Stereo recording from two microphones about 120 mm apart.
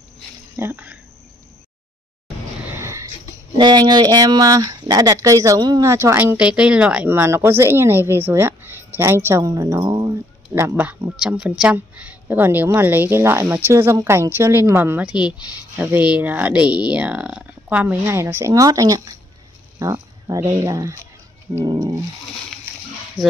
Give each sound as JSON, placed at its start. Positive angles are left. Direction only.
{"t": 0.6, "sound": "speech", "side_deg": -15}
{"t": 2.6, "sound": "a sound", "side_deg": -20}
{"t": 3.5, "sound": "speech", "side_deg": -35}
{"t": 7.1, "sound": "speech", "side_deg": -20}
{"t": 10.5, "sound": "speech", "side_deg": -15}
{"t": 15.0, "sound": "speech", "side_deg": -10}
{"t": 21.6, "sound": "a sound", "side_deg": -30}